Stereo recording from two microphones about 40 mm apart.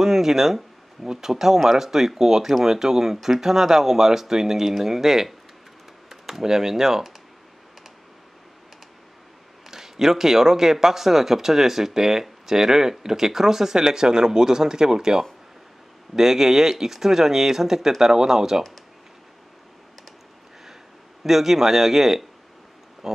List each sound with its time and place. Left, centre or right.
0.0 s speech: centre
9.7 s speech: centre
21.2 s speech: centre
23.0 s a sound: centre